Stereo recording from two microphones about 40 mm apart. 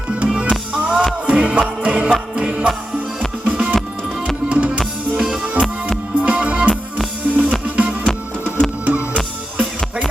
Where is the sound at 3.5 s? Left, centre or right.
Right.